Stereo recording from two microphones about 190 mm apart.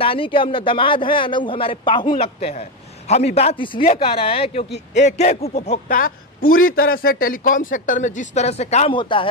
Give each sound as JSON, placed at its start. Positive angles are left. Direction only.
{"t": 0.0, "sound": "a man's voice", "side_deg": 30}